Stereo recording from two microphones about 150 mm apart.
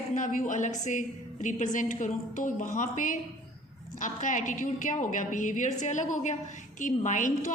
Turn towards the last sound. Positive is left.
turn(degrees=60)  # may be behind; listen again after turning